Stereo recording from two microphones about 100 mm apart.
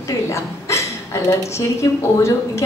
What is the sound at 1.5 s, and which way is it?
A woman's voice, 30° left (ahead or behind).